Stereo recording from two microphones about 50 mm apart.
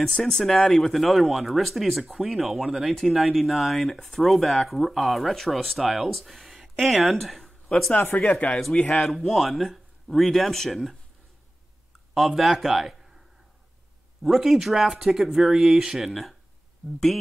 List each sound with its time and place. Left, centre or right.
0.0 s speech: centre
8.3 s speech: left
8.9 s speech: centre
12.1 s speech: centre
14.2 s speech: centre